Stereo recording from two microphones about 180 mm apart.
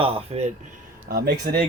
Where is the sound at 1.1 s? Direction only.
60° right (ahead or behind).